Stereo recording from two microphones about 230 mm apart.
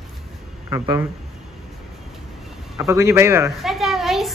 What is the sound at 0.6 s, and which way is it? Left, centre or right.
Speech, centre.